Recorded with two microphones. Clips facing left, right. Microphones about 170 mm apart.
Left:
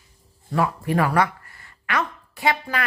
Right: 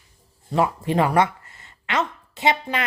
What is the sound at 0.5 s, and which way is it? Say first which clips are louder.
Speech: right 1 dB; 20° right (ahead or behind).